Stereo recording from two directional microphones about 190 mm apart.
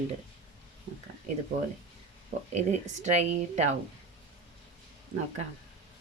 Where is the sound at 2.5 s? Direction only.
35° right (ahead or behind).